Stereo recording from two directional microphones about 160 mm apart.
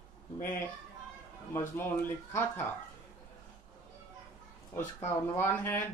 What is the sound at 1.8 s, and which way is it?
Speech, 15° left (ahead or behind).